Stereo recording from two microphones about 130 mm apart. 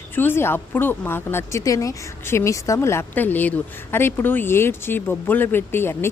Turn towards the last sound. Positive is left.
turn(degrees=20)  # may be behind; listen again after turning